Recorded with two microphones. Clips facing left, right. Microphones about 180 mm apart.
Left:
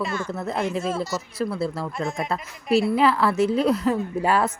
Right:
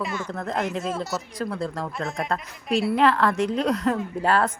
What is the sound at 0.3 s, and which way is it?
A woman's voice, 5° left (ahead or behind).